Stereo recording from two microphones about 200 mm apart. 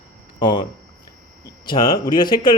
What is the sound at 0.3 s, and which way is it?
A man's voice, 25° left (ahead or behind).